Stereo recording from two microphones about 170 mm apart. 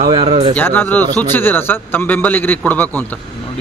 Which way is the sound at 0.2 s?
40° right (ahead or behind).